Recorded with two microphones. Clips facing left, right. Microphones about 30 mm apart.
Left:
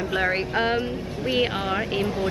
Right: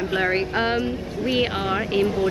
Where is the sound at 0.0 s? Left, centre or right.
Centre.